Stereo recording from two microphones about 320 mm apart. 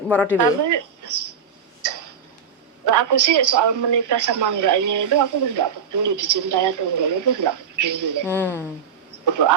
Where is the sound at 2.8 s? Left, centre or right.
Right.